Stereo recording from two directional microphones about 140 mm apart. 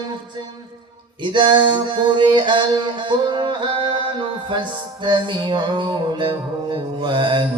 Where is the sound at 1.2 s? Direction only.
35° right (ahead or behind).